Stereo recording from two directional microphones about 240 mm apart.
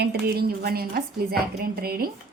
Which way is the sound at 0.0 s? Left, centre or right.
Right.